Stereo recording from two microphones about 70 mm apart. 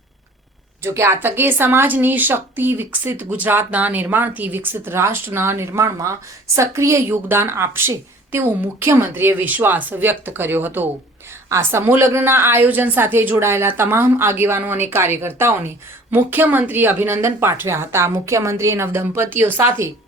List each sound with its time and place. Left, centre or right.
0.8 s a woman's voice: right
11.4 s a woman's voice: right